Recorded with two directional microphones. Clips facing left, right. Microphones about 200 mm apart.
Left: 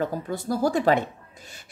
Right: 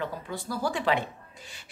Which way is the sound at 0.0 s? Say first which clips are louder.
Left 6 dB; 45° left (ahead or behind).